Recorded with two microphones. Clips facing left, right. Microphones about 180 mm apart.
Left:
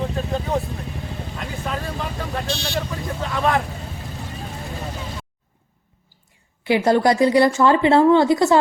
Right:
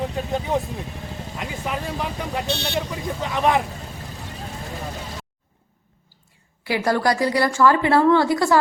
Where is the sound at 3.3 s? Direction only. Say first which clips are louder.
Right 1 dB; 20° right (ahead or behind).